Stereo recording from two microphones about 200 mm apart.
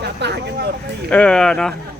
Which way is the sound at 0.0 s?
55° right (ahead or behind).